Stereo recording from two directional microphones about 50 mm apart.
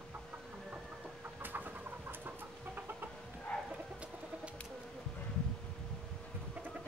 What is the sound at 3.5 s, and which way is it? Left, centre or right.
Chicken, centre.